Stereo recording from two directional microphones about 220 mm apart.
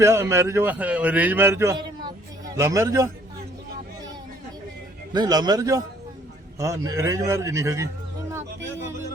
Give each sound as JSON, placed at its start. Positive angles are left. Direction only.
{"t": 0.0, "sound": "a man's voice", "side_deg": -10}
{"t": 5.1, "sound": "a man's voice", "side_deg": -20}